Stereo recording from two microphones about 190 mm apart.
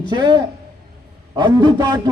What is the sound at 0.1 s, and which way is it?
A man's voice, 25° right (ahead or behind).